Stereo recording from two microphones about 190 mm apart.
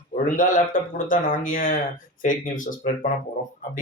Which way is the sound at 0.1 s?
45° left (ahead or behind).